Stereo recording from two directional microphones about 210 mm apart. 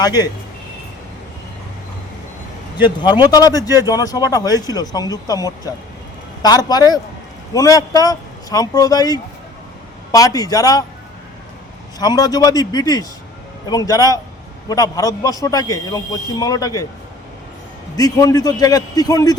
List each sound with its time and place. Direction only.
0.0 s a man's voice: 20° left (ahead or behind)
2.8 s a man's voice: 20° left (ahead or behind)
11.9 s a man's voice: 20° left (ahead or behind)
17.9 s a man's voice: 15° left (ahead or behind)